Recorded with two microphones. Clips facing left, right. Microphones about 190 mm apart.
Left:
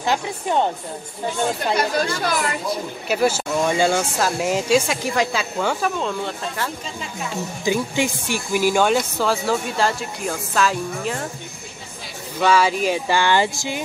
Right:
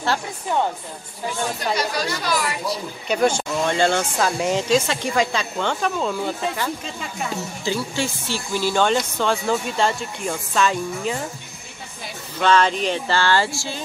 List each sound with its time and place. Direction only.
0.0 s a woman's voice: 20° left (ahead or behind)
2.1 s speech: 50° left (ahead or behind)
3.1 s speech: 5° left (ahead or behind)
7.6 s speech: 15° left (ahead or behind)
12.4 s speech: 10° left (ahead or behind)